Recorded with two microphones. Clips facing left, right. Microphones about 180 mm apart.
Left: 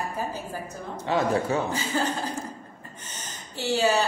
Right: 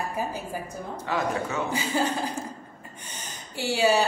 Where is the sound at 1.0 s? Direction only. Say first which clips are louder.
Left 4 dB; 30° left (ahead or behind).